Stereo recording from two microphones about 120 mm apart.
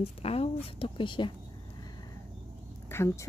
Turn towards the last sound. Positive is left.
turn(degrees=20)  # may be behind; listen again after turning